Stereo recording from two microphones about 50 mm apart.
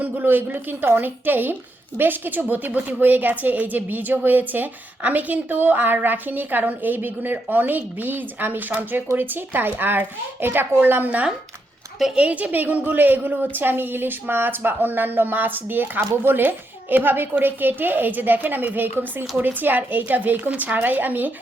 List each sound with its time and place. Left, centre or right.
0.0 s a woman's voice: right
12.1 s a woman's voice: right